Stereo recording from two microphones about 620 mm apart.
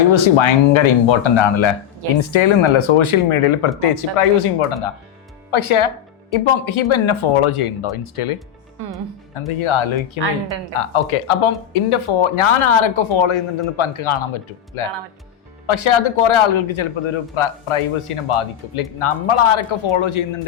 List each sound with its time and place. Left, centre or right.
0.0 s a man's voice: left
9.6 s a man's voice: left